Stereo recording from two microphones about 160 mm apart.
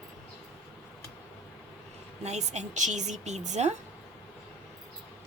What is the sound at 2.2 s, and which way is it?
A woman's voice, 45° right (ahead or behind).